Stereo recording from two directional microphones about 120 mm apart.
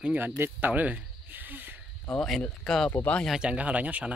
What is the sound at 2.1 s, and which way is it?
A man's voice, 5° left (ahead or behind).